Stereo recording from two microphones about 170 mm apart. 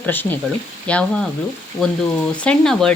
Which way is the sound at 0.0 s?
10° left (ahead or behind).